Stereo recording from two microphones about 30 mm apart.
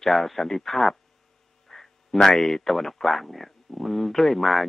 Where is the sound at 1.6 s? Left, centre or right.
Centre.